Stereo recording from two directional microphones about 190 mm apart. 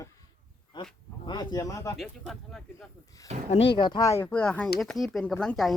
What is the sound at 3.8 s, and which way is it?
Speech, 20° left (ahead or behind).